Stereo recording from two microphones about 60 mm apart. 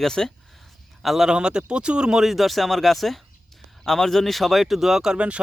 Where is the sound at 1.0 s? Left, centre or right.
Centre.